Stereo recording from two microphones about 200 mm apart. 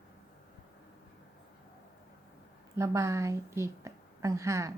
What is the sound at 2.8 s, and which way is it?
A woman's voice, 15° right (ahead or behind).